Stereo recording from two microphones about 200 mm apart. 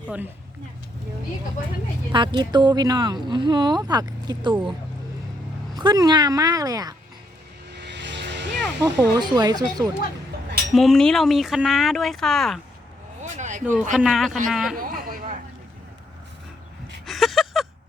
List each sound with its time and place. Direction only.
2.1 s speech: 20° right (ahead or behind)
5.7 s speech: 20° right (ahead or behind)
7.8 s vehicle: 60° right (ahead or behind)
8.8 s speech: 20° right (ahead or behind)
10.8 s speech: centre (ahead or behind)
13.3 s a sound: 40° right (ahead or behind)
13.9 s speech: centre (ahead or behind)
14.8 s a sound: 45° right (ahead or behind)
17.1 s a sound: centre (ahead or behind)